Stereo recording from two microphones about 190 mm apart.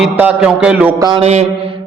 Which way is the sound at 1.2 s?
35° right (ahead or behind).